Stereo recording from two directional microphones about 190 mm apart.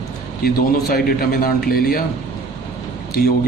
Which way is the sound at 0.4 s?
55° left (ahead or behind).